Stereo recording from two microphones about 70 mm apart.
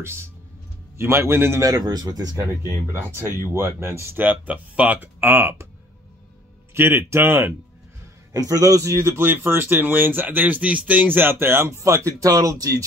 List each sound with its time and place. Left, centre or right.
0.0 s speech: right
1.6 s speech: right
2.9 s speech: right
6.7 s speech: right
8.3 s speech: right
12.1 s speech: right